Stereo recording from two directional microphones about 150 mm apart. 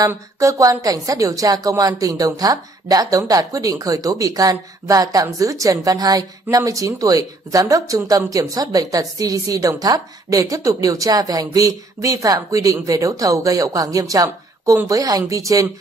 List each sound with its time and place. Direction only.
0.1 s a woman's voice: 20° right (ahead or behind)